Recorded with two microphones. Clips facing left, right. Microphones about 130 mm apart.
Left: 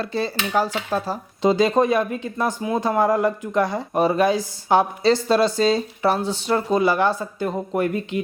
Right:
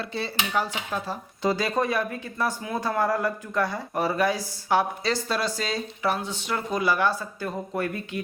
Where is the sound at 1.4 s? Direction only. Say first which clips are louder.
Left 7 dB; 20° left (ahead or behind).